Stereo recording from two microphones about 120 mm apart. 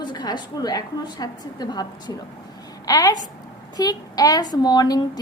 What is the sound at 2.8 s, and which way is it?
A woman's voice, 30° left (ahead or behind).